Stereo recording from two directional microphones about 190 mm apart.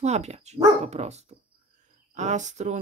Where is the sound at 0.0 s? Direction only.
35° right (ahead or behind).